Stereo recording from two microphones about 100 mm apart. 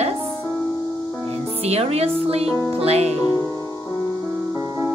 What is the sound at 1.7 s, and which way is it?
Speech, 90° right.